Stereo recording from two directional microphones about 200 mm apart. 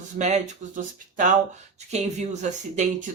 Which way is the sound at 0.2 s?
35° right (ahead or behind).